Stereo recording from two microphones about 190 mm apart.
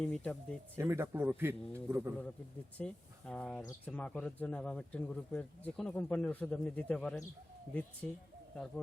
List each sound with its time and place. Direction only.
0.0 s speech: 5° left (ahead or behind)
0.8 s a man's voice: 15° right (ahead or behind)
2.7 s speech: 5° left (ahead or behind)